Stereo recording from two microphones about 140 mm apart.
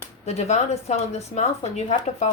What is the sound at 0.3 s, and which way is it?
A woman's voice, 50° left (ahead or behind).